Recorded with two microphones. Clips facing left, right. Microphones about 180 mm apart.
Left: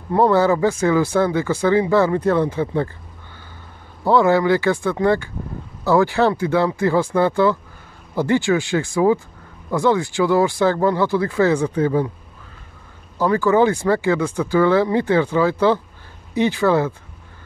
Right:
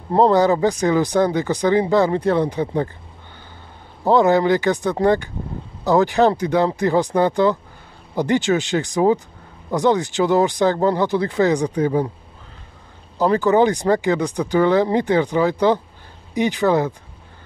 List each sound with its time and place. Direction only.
0.1 s speech: 20° right (ahead or behind)
4.0 s speech: 20° right (ahead or behind)
13.2 s speech: 20° right (ahead or behind)